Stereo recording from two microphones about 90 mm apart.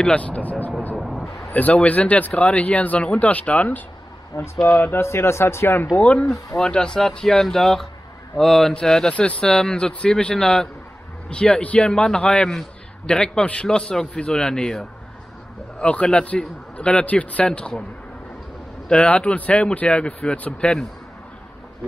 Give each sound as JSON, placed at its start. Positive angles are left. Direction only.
{"t": 0.0, "sound": "a man's voice", "side_deg": 15}
{"t": 4.3, "sound": "speech", "side_deg": 35}
{"t": 4.6, "sound": "speech", "side_deg": 20}
{"t": 5.9, "sound": "a man's voice", "side_deg": 15}
{"t": 18.9, "sound": "a man's voice", "side_deg": 10}